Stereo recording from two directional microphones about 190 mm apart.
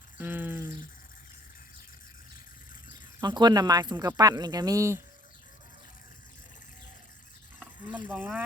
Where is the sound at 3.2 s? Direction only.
20° right (ahead or behind).